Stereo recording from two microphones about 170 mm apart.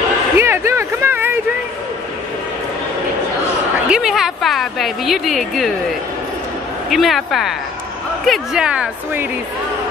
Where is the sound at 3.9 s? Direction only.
5° right (ahead or behind).